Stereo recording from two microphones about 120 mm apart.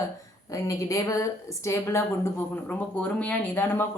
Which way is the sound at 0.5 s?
25° left (ahead or behind).